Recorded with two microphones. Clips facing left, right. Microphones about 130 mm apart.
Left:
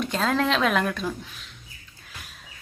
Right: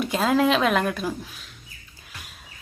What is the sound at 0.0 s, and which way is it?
Speech, 5° right (ahead or behind).